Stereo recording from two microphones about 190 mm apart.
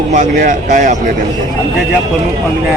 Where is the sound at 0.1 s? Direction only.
40° right (ahead or behind).